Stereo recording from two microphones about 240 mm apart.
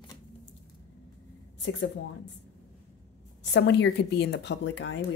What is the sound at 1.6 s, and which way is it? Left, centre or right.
Speech, left.